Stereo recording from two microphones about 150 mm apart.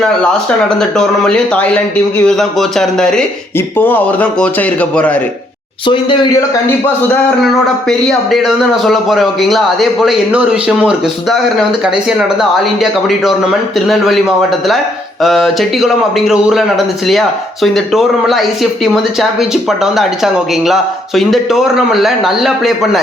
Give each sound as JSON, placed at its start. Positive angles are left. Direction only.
{"t": 0.8, "sound": "a man's voice", "side_deg": 5}
{"t": 5.8, "sound": "speech", "side_deg": 35}
{"t": 7.9, "sound": "speech", "side_deg": 0}